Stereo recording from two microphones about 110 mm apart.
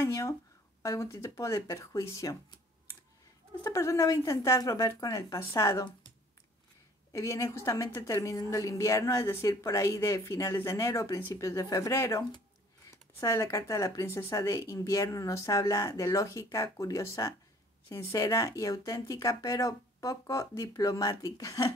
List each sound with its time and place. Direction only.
0.0 s a sound: 30° left (ahead or behind)
0.8 s a woman's voice: 25° left (ahead or behind)
3.6 s a woman's voice: 25° left (ahead or behind)
7.1 s a woman's voice: 30° left (ahead or behind)